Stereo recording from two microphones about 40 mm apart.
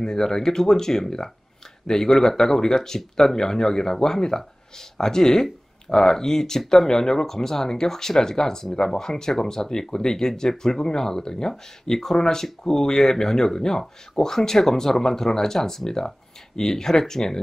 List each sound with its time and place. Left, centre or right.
0.0 s speech: centre